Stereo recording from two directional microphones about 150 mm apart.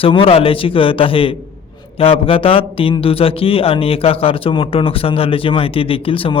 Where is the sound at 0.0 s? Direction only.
35° left (ahead or behind).